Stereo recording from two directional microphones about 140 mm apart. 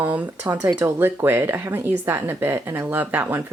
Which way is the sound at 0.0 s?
10° right (ahead or behind).